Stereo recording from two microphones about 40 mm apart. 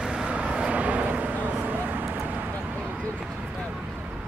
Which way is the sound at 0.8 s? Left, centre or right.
Right.